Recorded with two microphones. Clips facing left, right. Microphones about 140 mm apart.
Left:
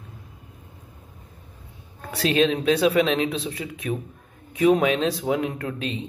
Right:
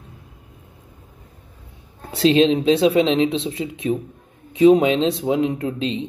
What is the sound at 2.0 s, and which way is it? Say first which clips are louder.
Speech: right 6 dB; 25° right (ahead or behind).